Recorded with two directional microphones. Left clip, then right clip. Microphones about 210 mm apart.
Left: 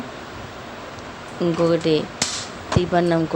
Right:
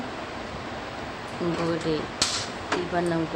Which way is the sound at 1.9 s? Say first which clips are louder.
Left 5 dB; 40° left (ahead or behind).